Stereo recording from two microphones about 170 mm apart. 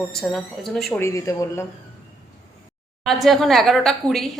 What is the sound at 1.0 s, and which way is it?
Speech, 20° left (ahead or behind).